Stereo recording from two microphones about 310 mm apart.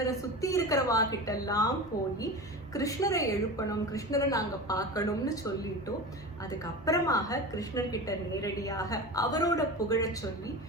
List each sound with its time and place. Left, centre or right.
0.0 s a woman's voice: centre
1.9 s a woman's voice: left
2.7 s a woman's voice: centre
6.5 s a woman's voice: centre